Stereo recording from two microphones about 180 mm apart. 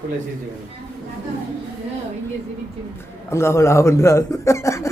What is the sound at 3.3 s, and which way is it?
Speech, 15° left (ahead or behind).